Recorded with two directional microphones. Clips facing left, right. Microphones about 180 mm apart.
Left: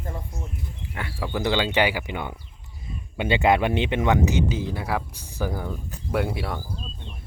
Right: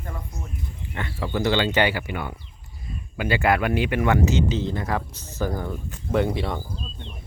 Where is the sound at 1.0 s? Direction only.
10° left (ahead or behind).